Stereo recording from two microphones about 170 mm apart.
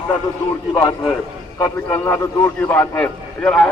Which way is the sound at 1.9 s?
10° left (ahead or behind).